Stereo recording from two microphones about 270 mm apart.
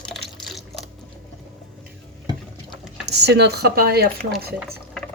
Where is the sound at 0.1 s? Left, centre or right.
Centre.